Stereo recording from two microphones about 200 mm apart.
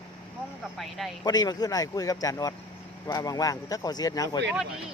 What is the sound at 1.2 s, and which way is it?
A man's voice, 20° left (ahead or behind).